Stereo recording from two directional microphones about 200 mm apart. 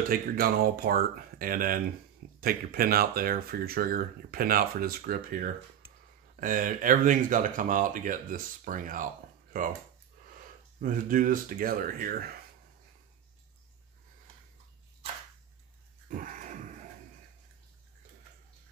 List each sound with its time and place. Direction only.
0.1 s speech: 50° right (ahead or behind)
10.8 s speech: 45° right (ahead or behind)